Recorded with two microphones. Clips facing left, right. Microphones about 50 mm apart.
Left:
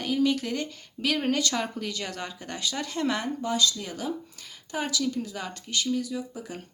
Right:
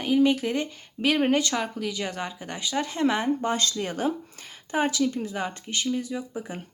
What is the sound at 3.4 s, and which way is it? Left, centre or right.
Speech, right.